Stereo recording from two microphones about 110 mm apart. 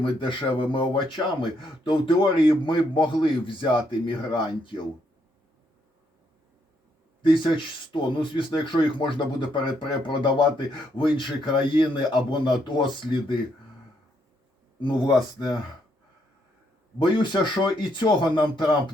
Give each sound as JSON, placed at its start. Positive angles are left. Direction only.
{"t": 0.0, "sound": "speech", "side_deg": 50}
{"t": 7.2, "sound": "speech", "side_deg": 50}
{"t": 14.8, "sound": "speech", "side_deg": 45}
{"t": 17.0, "sound": "speech", "side_deg": 45}